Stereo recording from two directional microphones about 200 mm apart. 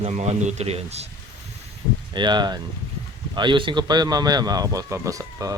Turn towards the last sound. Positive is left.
turn(degrees=-15)  # may be behind; listen again after turning